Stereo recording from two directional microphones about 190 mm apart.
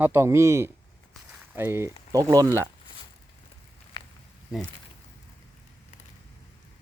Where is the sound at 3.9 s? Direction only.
25° left (ahead or behind).